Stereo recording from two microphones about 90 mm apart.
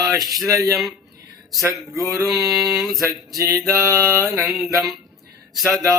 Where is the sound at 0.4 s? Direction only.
40° right (ahead or behind).